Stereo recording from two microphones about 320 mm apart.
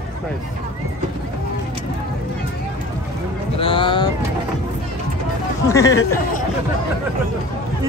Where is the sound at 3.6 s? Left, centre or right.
Centre.